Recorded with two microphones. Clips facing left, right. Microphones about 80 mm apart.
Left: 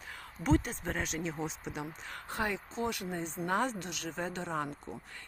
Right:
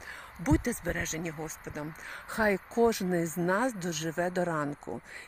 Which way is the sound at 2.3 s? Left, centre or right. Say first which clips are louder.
Right 7 dB; right.